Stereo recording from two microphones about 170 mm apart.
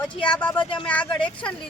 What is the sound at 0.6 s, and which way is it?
Speech, 30° left (ahead or behind).